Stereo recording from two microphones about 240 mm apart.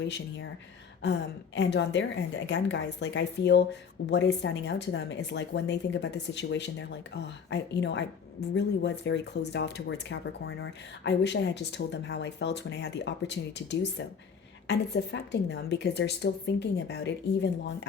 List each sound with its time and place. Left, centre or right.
1.5 s a woman's voice: left